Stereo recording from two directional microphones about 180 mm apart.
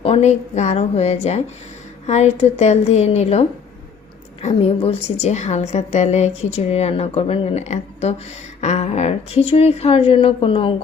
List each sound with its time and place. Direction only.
0.0 s a woman's voice: 35° left (ahead or behind)